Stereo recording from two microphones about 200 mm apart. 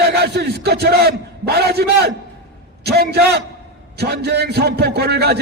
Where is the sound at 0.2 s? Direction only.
55° right (ahead or behind).